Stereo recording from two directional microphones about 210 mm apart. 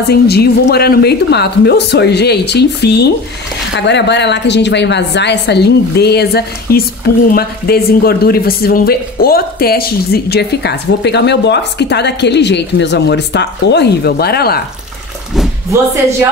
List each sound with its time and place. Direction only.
0.0 s a woman's voice: 50° left (ahead or behind)
15.7 s speech: 15° right (ahead or behind)